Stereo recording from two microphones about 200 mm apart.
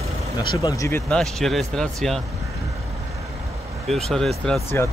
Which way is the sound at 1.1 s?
Centre (ahead or behind).